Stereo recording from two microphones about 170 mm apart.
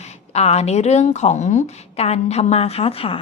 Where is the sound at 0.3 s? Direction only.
40° left (ahead or behind).